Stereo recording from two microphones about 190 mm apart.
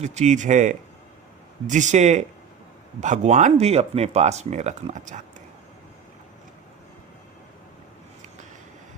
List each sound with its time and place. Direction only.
0.0 s speech: 40° right (ahead or behind)